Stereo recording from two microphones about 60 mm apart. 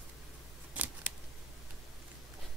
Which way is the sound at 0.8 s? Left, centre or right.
Right.